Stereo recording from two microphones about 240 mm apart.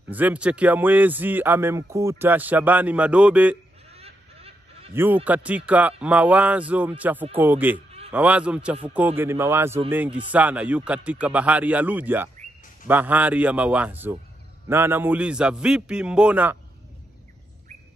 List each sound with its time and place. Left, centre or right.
0.1 s speech: centre
3.9 s a sound: right
4.9 s a man's voice: centre